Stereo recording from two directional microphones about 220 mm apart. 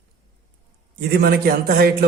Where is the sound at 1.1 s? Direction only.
45° right (ahead or behind).